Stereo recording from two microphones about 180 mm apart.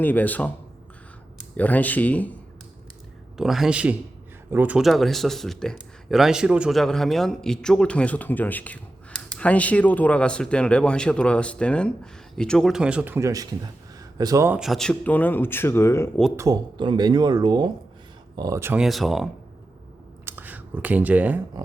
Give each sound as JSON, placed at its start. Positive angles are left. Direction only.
{"t": 0.0, "sound": "speech", "side_deg": 10}
{"t": 1.5, "sound": "speech", "side_deg": 10}
{"t": 3.3, "sound": "a man's voice", "side_deg": 0}
{"t": 14.6, "sound": "speech", "side_deg": 0}
{"t": 16.4, "sound": "speech", "side_deg": -25}
{"t": 20.2, "sound": "a sound", "side_deg": -10}